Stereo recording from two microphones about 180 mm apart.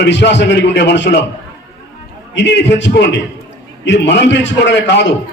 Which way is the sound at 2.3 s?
80° left.